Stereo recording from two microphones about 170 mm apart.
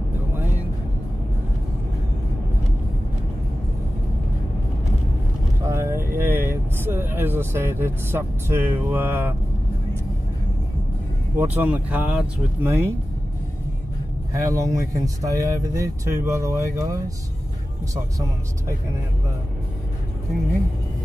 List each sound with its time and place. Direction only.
5.6 s vehicle: 15° right (ahead or behind)
11.3 s speech: 10° right (ahead or behind)
14.3 s speech: 20° right (ahead or behind)